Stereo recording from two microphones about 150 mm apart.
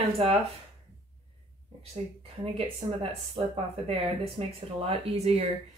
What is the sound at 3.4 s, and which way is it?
Speech, 35° right (ahead or behind).